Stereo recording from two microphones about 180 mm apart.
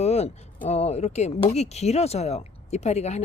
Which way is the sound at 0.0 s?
35° left (ahead or behind).